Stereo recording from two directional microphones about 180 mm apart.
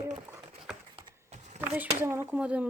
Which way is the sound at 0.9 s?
40° right (ahead or behind).